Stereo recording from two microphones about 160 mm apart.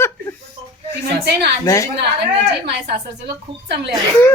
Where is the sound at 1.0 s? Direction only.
90° right.